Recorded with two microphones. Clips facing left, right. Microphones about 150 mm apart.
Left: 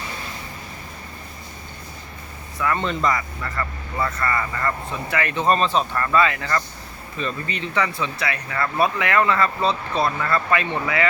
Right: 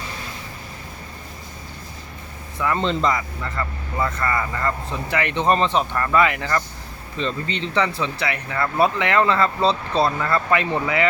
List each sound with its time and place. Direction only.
2.7 s speech: 25° right (ahead or behind)